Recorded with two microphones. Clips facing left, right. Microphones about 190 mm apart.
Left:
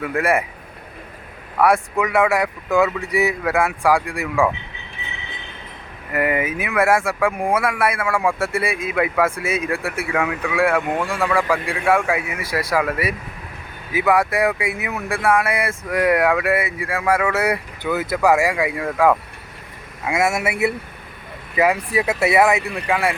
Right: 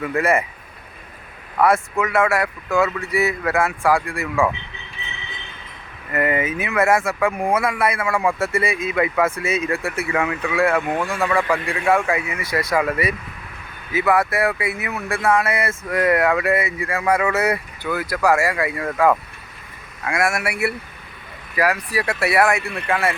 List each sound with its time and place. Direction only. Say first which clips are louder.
0.0 s speech: even; 10° left (ahead or behind)
1.5 s speech: left 1 dB; 10° left (ahead or behind)
6.1 s speech: even; 10° left (ahead or behind)
18.8 s speech: even; 5° left (ahead or behind)
20.1 s speech: left 2 dB; 20° left (ahead or behind)